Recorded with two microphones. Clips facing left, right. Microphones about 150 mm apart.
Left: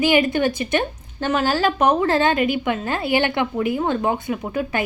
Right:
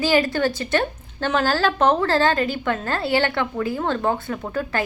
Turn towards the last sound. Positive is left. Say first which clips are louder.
# left 1 dB
turn(degrees=15)  # may be behind; listen again after turning